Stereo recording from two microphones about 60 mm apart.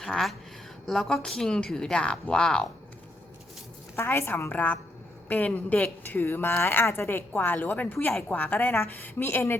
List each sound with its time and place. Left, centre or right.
0.0 s speech: centre
3.9 s a woman's voice: left
4.5 s speech: left
7.3 s a woman's voice: left